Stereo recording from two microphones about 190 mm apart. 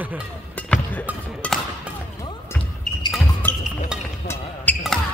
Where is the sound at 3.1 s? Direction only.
10° left (ahead or behind).